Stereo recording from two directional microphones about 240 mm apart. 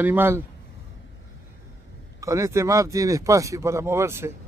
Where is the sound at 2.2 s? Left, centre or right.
Centre.